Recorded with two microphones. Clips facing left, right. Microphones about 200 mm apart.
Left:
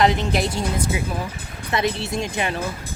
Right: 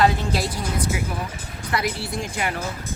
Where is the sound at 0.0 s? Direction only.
20° left (ahead or behind).